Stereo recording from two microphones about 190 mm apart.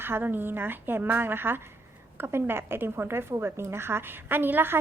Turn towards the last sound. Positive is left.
turn(degrees=-10)  # may be behind; listen again after turning